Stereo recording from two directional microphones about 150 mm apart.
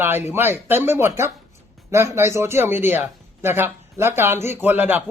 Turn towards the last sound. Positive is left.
turn(degrees=-10)  # may be behind; listen again after turning